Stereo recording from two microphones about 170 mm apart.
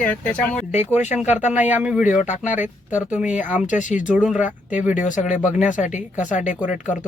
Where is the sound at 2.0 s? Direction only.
45° left (ahead or behind).